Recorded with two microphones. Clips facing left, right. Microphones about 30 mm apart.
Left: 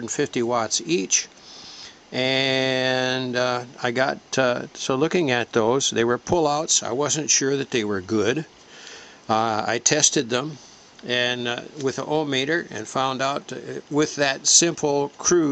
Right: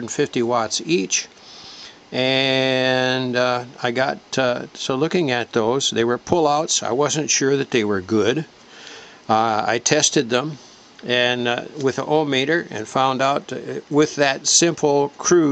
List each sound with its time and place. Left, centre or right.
0.0 s speech: centre
6.0 s speech: centre